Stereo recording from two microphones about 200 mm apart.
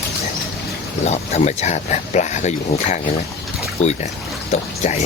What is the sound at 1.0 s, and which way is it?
Speech, 35° left (ahead or behind).